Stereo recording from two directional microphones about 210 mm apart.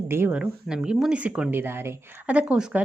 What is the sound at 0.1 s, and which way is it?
A woman's voice, 10° right (ahead or behind).